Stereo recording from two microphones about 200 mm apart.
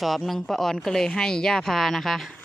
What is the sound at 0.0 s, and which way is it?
Speech, centre (ahead or behind).